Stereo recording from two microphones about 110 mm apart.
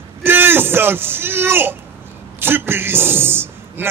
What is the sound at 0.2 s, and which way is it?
A man's voice, 20° right (ahead or behind).